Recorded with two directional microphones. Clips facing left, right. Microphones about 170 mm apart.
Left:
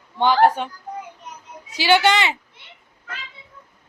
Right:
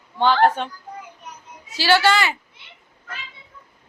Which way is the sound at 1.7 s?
20° left (ahead or behind).